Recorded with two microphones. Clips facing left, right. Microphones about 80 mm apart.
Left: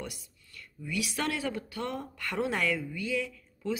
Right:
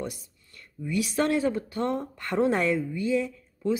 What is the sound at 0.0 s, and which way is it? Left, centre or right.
Speech, right.